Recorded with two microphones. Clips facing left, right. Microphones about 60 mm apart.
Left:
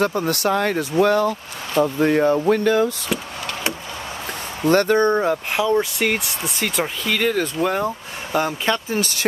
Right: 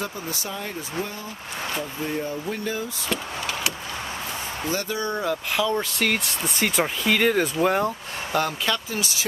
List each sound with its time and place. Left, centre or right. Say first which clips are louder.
0.0 s speech: left 11 dB; left
4.6 s speech: left 12 dB; left
5.8 s speech: left 4 dB; centre
8.3 s speech: left 4 dB; centre
8.7 s speech: left 6 dB; left